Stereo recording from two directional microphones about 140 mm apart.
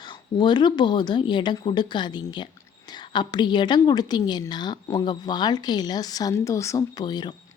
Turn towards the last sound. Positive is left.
turn(degrees=30)  # may be behind; listen again after turning